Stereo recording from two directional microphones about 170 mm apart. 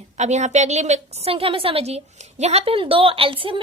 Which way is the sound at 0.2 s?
45° right (ahead or behind).